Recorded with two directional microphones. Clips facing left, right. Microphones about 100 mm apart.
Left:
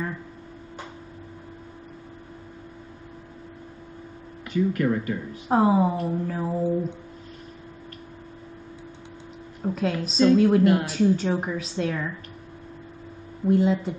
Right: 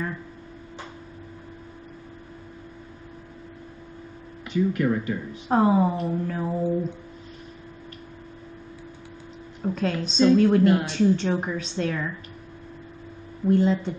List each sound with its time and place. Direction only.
4.5 s speech: 15° right (ahead or behind)
5.5 s speech: 5° left (ahead or behind)
9.6 s a woman's voice: 10° left (ahead or behind)
13.5 s a woman's voice: 5° left (ahead or behind)